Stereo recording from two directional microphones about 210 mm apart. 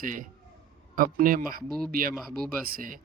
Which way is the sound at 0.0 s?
40° right (ahead or behind).